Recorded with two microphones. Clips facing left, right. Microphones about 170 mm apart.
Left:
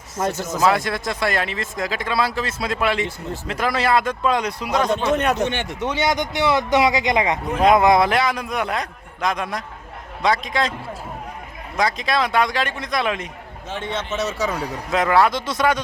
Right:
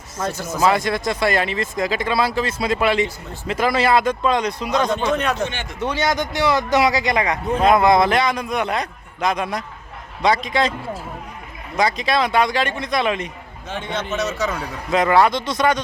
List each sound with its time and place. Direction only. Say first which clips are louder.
0.2 s speech: left 2 dB; 20° left (ahead or behind)
0.6 s speech: right 1 dB; centre (ahead or behind)
5.1 s speech: left 2 dB; 20° left (ahead or behind); by 10.8 s centre (ahead or behind)
11.8 s speech: right 2 dB; centre (ahead or behind)